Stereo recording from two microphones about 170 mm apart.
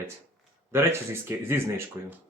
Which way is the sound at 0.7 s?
15° right (ahead or behind).